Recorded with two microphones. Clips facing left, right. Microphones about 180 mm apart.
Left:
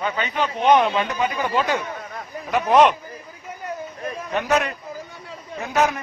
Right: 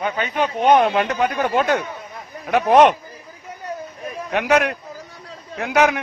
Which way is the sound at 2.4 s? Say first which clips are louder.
Right 3 dB; 65° right (ahead or behind).